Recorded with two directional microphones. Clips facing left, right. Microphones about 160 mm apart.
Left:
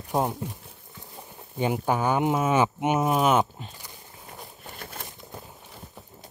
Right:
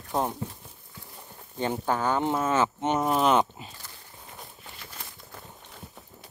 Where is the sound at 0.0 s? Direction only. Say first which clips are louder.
Left 2 dB; 15° left (ahead or behind).